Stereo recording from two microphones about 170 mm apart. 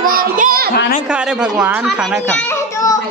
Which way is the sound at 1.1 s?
5° right (ahead or behind).